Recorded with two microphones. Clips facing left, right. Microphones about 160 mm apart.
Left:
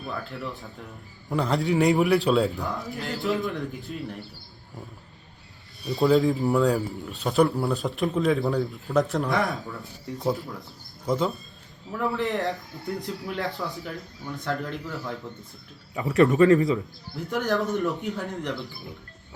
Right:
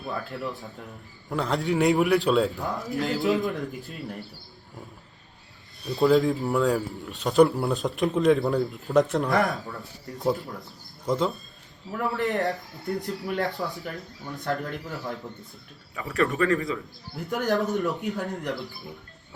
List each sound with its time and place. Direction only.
0.9 s speech: centre (ahead or behind)
5.8 s speech: centre (ahead or behind)
16.0 s speech: 20° left (ahead or behind)
17.2 s speech: centre (ahead or behind)